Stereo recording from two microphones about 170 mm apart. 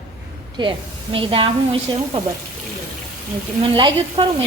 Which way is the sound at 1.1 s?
30° right (ahead or behind).